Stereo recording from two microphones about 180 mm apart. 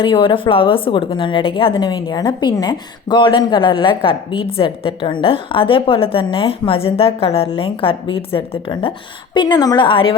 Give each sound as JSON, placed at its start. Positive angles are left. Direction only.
{"t": 0.0, "sound": "a woman's voice", "side_deg": 25}